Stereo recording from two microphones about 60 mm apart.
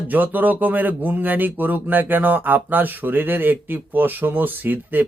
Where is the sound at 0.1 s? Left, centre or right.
Right.